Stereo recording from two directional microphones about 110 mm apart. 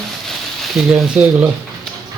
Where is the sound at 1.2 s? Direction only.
15° right (ahead or behind).